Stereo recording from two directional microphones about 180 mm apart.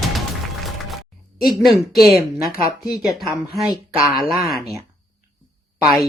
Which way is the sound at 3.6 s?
20° left (ahead or behind).